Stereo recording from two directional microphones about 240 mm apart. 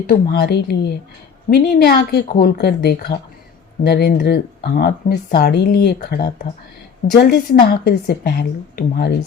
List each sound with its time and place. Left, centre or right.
0.1 s speech: left